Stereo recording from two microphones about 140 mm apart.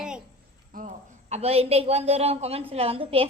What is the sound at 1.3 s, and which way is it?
A woman's voice, 50° right (ahead or behind).